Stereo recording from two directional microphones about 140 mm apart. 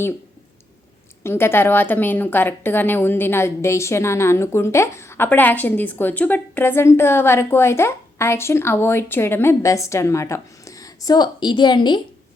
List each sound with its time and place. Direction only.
1.2 s speech: 15° left (ahead or behind); by 11.9 s 30° left (ahead or behind)